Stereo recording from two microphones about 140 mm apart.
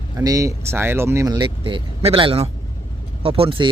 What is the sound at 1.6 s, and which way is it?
Speech, 40° right (ahead or behind).